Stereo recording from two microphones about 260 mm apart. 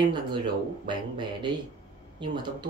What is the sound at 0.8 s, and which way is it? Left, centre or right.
Speech, centre.